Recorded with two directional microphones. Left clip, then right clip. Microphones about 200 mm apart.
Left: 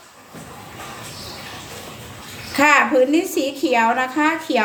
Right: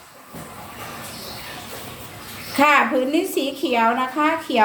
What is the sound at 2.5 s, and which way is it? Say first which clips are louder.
A woman's voice: left 2 dB; 15° left (ahead or behind).